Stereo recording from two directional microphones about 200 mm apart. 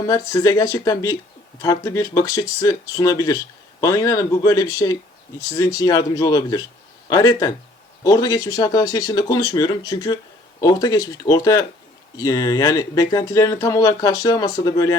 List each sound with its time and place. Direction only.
0.1 s speech: 20° left (ahead or behind)